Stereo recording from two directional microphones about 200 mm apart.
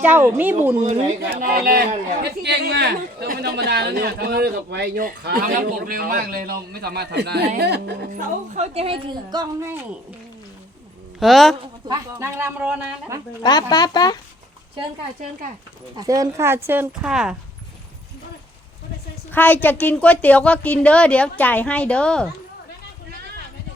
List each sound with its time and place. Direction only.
0.0 s speech: 10° right (ahead or behind)
1.4 s a man's voice: 45° right (ahead or behind)
8.5 s a woman's voice: 30° right (ahead or behind)
11.2 s speech: centre (ahead or behind)
12.2 s speech: 10° right (ahead or behind)
13.4 s speech: 20° left (ahead or behind)
16.0 s speech: 20° right (ahead or behind)
19.3 s a woman's voice: 10° left (ahead or behind)